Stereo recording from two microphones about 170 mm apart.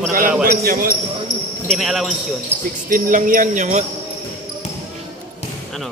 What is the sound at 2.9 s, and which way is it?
Speech, 50° right (ahead or behind).